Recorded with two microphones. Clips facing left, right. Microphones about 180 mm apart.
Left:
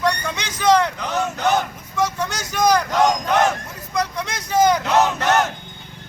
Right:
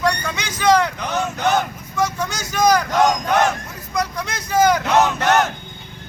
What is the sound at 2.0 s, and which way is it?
Speech, 5° right (ahead or behind).